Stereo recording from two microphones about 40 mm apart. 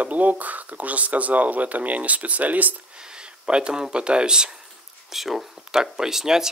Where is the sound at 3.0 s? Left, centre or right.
Right.